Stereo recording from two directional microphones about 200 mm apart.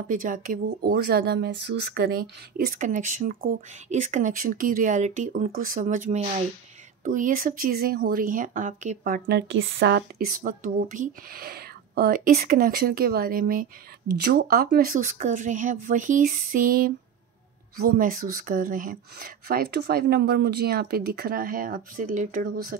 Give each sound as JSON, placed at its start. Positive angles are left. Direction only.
{"t": 0.1, "sound": "speech", "side_deg": -40}
{"t": 9.2, "sound": "speech", "side_deg": -70}